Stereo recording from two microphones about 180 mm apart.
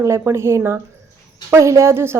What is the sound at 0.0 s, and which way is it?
A woman's voice, 15° right (ahead or behind).